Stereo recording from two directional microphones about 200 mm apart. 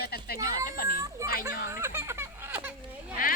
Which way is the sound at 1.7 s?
10° right (ahead or behind).